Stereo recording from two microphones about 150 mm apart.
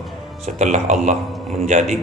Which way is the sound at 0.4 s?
50° right (ahead or behind).